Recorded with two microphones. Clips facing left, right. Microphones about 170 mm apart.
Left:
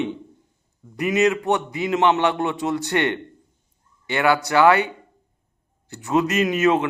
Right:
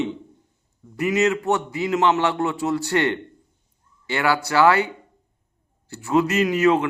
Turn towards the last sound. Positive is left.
turn(degrees=20)  # may be behind; listen again after turning